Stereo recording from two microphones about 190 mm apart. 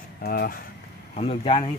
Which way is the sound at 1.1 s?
30° left (ahead or behind).